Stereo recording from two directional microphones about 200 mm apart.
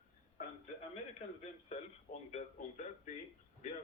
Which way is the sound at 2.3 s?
35° left (ahead or behind).